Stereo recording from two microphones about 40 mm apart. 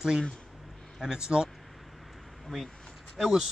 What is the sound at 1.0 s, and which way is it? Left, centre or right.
Speech, centre.